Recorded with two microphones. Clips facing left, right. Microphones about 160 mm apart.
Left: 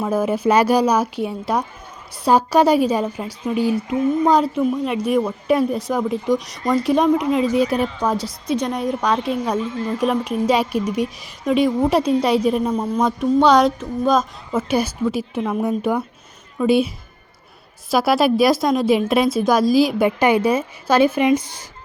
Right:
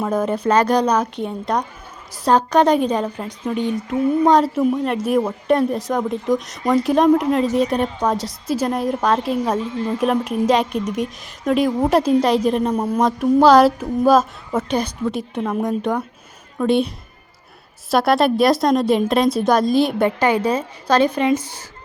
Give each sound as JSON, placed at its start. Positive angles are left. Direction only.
{"t": 0.0, "sound": "a woman's voice", "side_deg": 5}
{"t": 9.6, "sound": "a woman's voice", "side_deg": -30}
{"t": 10.0, "sound": "a woman's voice", "side_deg": 0}
{"t": 12.7, "sound": "a woman's voice", "side_deg": -10}
{"t": 14.7, "sound": "a woman's voice", "side_deg": 5}
{"t": 20.1, "sound": "speech", "side_deg": 15}